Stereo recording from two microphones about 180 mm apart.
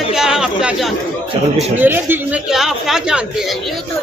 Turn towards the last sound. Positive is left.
turn(degrees=-5)  # may be behind; listen again after turning